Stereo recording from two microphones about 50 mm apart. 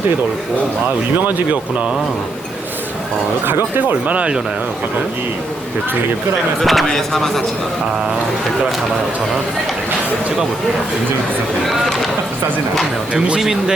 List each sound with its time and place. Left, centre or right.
1.2 s speech: right
3.4 s speech: right
6.6 s speech: centre
13.4 s speech: centre